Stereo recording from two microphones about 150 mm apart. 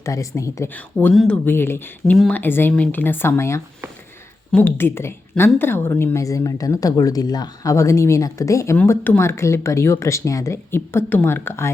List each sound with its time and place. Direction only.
0.0 s a woman's voice: 20° left (ahead or behind)
1.1 s speech: centre (ahead or behind)
1.5 s a woman's voice: 15° left (ahead or behind)